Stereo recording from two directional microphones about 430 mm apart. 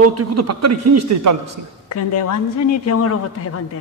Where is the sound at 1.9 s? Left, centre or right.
Left.